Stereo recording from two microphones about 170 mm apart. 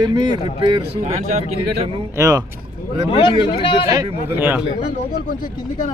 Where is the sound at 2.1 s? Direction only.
20° right (ahead or behind).